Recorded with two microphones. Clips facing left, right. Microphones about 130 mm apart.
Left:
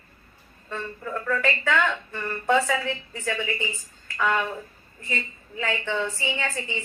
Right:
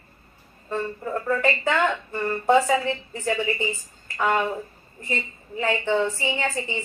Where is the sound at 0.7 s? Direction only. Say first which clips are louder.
Right 5 dB; 30° right (ahead or behind).